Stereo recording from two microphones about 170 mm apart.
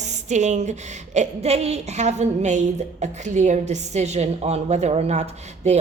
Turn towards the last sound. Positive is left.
turn(degrees=-40)  # may be behind; listen again after turning